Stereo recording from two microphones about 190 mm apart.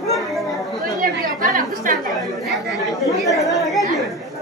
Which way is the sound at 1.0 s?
45° right (ahead or behind).